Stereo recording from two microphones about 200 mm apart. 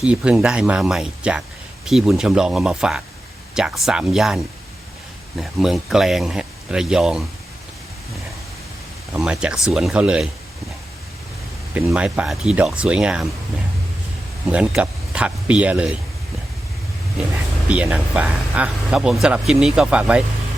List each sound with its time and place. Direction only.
0.0 s speech: 5° right (ahead or behind)
5.4 s speech: centre (ahead or behind)
9.1 s speech: 5° right (ahead or behind)
11.7 s speech: 5° right (ahead or behind)
14.4 s speech: 5° right (ahead or behind)
17.7 s speech: 5° right (ahead or behind)